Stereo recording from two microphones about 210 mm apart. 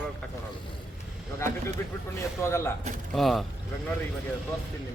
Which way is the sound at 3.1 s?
Centre (ahead or behind).